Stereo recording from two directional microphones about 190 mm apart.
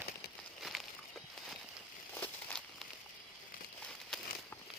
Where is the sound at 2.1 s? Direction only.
5° left (ahead or behind).